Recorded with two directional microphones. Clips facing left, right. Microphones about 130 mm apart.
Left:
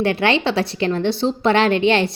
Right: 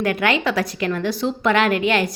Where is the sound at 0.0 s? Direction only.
30° left (ahead or behind).